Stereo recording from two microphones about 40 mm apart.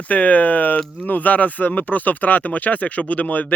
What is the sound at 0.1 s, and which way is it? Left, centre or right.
Speech, left.